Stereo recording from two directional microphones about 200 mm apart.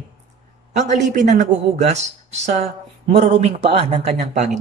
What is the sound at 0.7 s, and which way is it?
Speech, 35° right (ahead or behind).